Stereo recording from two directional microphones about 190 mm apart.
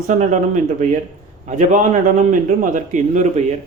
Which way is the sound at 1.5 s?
40° right (ahead or behind).